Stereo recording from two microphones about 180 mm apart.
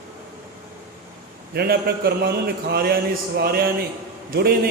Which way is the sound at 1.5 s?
60° right (ahead or behind).